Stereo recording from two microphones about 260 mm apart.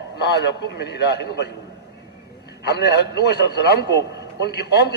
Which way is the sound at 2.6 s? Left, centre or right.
Left.